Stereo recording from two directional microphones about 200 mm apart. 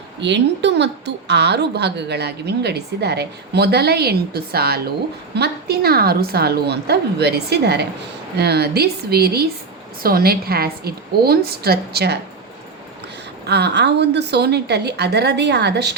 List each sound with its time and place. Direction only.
0.2 s a woman's voice: 60° right (ahead or behind)
13.4 s a woman's voice: 55° right (ahead or behind)